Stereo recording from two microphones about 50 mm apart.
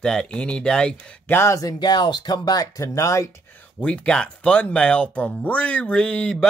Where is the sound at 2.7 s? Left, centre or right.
Left.